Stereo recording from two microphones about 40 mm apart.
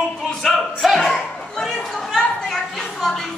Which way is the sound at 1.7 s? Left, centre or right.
Centre.